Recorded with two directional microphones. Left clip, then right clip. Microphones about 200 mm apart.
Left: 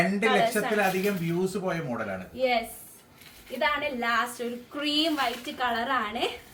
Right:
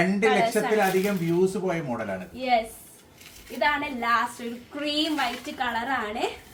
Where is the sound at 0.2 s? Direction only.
15° left (ahead or behind).